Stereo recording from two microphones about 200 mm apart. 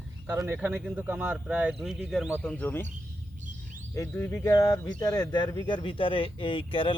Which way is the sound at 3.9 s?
15° left (ahead or behind).